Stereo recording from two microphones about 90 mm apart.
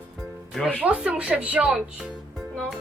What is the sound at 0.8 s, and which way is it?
Speech, 15° right (ahead or behind).